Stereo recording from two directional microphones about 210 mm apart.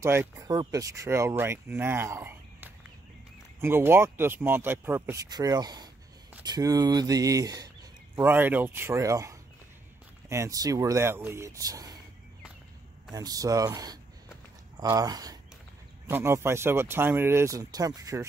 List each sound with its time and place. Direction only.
0.0 s speech: 10° right (ahead or behind)
13.1 s speech: 15° right (ahead or behind)